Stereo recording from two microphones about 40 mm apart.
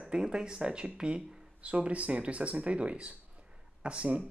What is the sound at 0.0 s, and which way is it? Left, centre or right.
Speech, right.